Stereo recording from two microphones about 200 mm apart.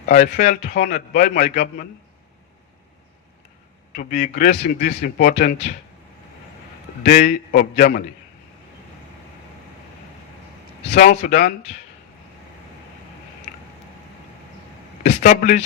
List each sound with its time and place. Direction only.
0.0 s a man's voice: 40° left (ahead or behind)
3.9 s a man's voice: 50° left (ahead or behind)
7.0 s a man's voice: 45° left (ahead or behind)
10.8 s speech: 40° left (ahead or behind)
15.0 s speech: 45° left (ahead or behind)